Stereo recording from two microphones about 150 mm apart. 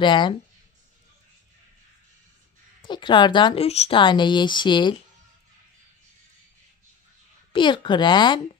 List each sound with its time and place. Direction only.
0.0 s speech: 30° left (ahead or behind)
2.9 s speech: 30° left (ahead or behind)
3.6 s speech: 45° left (ahead or behind)
7.5 s speech: 30° left (ahead or behind)